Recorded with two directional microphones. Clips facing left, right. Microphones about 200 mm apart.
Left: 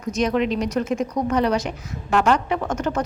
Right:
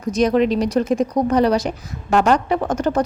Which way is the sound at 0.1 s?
35° right (ahead or behind).